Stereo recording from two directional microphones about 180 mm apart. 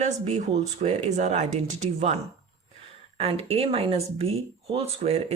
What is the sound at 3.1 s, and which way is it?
Speech, 35° right (ahead or behind).